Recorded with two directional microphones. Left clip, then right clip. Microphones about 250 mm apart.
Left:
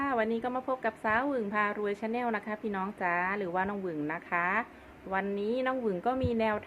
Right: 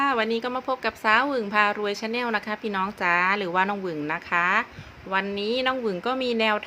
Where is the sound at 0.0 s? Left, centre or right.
Centre.